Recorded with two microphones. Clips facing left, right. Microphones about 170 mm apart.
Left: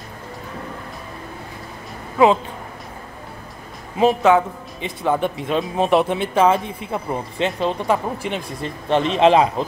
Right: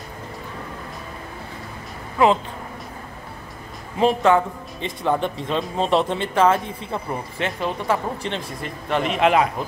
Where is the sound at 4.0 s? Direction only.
10° left (ahead or behind).